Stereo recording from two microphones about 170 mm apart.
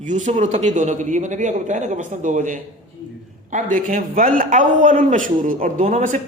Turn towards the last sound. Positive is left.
turn(degrees=-45)  # may be behind; listen again after turning